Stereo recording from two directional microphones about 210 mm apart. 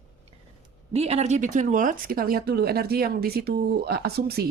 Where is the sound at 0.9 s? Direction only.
30° right (ahead or behind).